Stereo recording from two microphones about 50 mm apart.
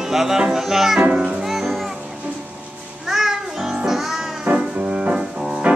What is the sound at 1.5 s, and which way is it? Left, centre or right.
Music, centre.